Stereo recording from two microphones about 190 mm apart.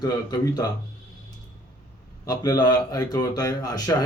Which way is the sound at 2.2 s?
20° left (ahead or behind).